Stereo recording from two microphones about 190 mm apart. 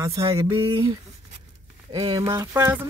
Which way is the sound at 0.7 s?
30° right (ahead or behind).